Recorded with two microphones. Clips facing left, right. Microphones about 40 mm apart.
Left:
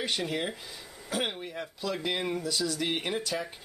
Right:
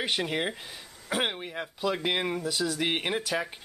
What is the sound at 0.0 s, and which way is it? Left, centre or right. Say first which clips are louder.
Speech: right 2 dB; right.